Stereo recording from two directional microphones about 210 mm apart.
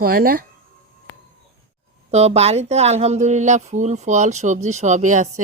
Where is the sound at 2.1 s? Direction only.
30° right (ahead or behind).